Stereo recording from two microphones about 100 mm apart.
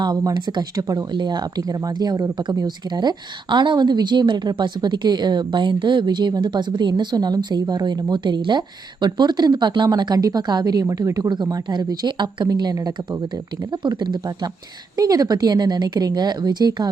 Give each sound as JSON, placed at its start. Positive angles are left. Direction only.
{"t": 0.0, "sound": "speech", "side_deg": -45}